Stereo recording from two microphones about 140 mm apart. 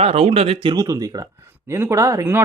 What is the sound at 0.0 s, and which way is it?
A man's voice, 45° right (ahead or behind).